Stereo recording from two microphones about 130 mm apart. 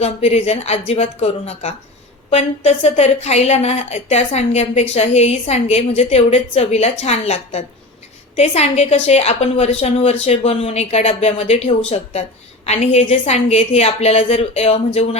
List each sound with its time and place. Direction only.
0.0 s a woman's voice: 55° left (ahead or behind)